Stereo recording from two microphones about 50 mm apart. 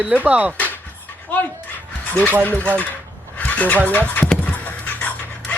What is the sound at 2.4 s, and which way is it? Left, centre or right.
Speech, left.